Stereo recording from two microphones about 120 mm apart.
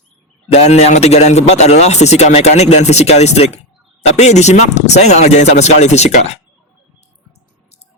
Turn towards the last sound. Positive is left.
turn(degrees=80)